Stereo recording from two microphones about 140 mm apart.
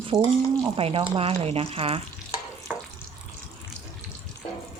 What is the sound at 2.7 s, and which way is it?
Water, 15° right (ahead or behind).